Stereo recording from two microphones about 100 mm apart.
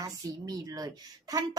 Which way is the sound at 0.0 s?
40° right (ahead or behind).